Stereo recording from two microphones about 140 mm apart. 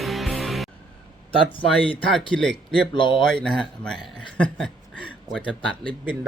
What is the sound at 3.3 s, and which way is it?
Speech, 5° left (ahead or behind).